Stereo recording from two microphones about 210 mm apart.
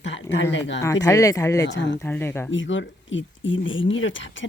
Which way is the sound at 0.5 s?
60° left (ahead or behind).